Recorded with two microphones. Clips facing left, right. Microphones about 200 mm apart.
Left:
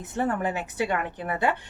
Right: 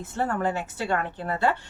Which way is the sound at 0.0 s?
20° left (ahead or behind).